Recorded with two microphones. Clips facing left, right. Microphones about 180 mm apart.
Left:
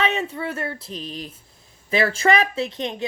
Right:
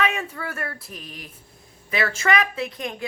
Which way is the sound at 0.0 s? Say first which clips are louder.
Left 2 dB; 25° left (ahead or behind).